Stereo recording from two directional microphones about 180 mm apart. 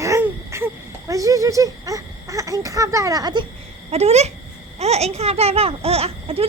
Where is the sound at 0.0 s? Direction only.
15° right (ahead or behind).